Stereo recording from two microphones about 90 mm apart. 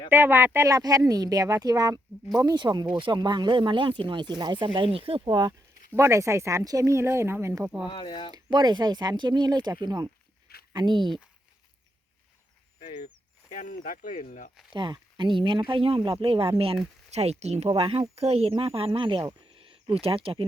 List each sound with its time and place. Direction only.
0.1 s speech: 25° right (ahead or behind)
0.7 s speech: 40° right (ahead or behind)
2.4 s speech: 50° right (ahead or behind)
6.0 s speech: 35° right (ahead or behind)
7.6 s speech: 10° right (ahead or behind)
7.9 s speech: 60° left (ahead or behind)
8.3 s speech: 55° right (ahead or behind)
14.7 s speech: 55° right (ahead or behind); by 20.4 s 85° right